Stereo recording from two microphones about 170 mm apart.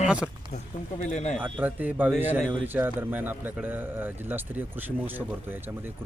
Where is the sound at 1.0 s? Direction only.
45° left (ahead or behind).